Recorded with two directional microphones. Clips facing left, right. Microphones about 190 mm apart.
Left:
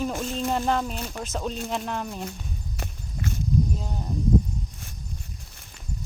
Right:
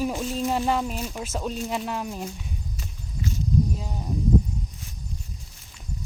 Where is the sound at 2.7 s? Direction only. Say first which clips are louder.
Left 1 dB; 60° left (ahead or behind).